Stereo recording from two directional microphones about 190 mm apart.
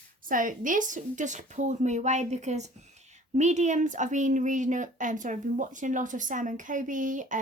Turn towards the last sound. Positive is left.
turn(degrees=-40)  # may be behind; listen again after turning